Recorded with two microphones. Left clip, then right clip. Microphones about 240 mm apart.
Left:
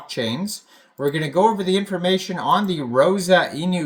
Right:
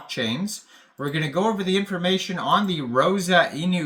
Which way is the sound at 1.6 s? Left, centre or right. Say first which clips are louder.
Left 3 dB; centre.